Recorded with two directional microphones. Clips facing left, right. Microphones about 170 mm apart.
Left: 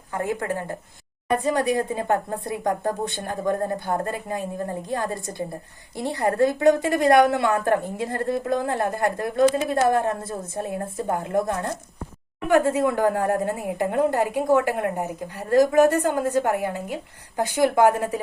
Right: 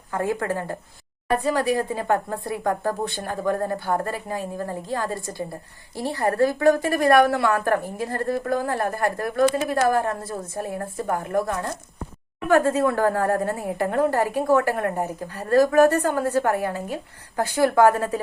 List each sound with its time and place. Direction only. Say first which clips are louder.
0.2 s a woman's voice: right 1 dB; 20° left (ahead or behind)